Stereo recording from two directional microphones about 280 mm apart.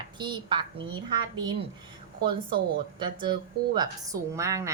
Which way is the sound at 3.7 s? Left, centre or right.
Centre.